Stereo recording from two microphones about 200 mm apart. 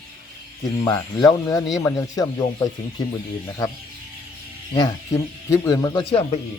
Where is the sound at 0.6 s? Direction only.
20° left (ahead or behind).